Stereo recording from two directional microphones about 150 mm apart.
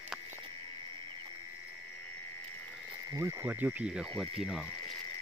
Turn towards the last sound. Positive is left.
turn(degrees=0)  # may be behind; listen again after turning